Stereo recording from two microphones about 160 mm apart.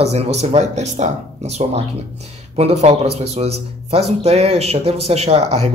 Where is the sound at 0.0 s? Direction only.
40° right (ahead or behind).